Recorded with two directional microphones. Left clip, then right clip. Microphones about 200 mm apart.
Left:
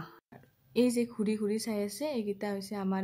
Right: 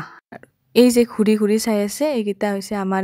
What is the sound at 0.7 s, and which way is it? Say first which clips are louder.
A woman's voice: right 15 dB; 45° right (ahead or behind).